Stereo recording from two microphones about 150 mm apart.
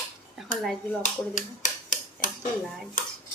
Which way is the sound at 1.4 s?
60° left (ahead or behind).